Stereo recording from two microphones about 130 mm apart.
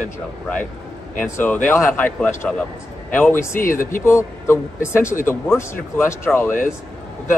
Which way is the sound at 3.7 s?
90° left.